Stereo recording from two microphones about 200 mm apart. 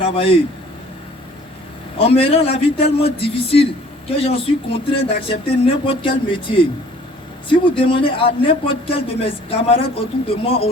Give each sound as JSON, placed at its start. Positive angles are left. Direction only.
{"t": 0.0, "sound": "a man's voice", "side_deg": 25}
{"t": 2.0, "sound": "a man's voice", "side_deg": 30}